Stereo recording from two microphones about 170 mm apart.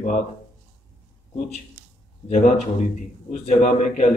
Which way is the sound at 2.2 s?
45° left (ahead or behind).